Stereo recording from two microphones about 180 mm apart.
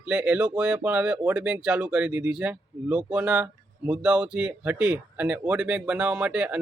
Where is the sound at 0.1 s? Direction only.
10° right (ahead or behind).